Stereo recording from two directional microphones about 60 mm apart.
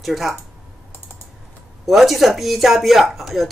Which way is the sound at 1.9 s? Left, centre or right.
Centre.